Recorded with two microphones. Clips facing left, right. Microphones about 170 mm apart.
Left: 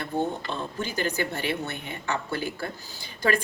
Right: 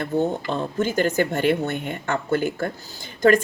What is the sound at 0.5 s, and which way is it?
Speech, 50° right (ahead or behind).